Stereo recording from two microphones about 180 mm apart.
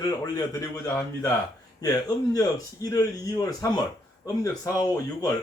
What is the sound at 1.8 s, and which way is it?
Speech, 20° left (ahead or behind).